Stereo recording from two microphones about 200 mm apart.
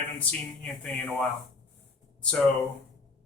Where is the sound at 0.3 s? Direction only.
5° left (ahead or behind).